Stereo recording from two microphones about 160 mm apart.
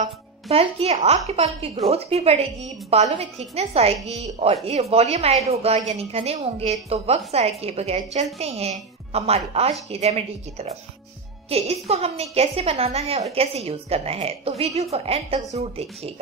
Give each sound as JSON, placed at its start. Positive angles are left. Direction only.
{"t": 0.0, "sound": "a woman's voice", "side_deg": -40}